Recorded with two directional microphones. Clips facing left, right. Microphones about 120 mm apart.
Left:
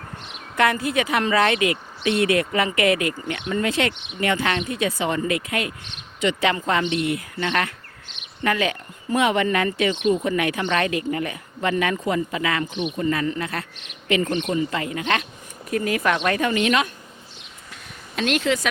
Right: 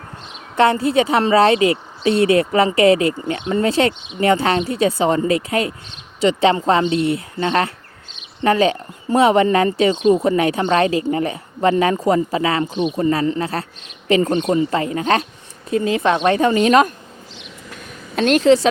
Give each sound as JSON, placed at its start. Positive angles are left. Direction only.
{"t": 0.5, "sound": "speech", "side_deg": -30}
{"t": 15.7, "sound": "speech", "side_deg": -25}
{"t": 18.2, "sound": "speech", "side_deg": -40}